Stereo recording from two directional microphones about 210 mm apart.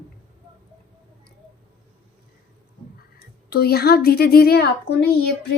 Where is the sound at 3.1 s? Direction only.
50° left (ahead or behind).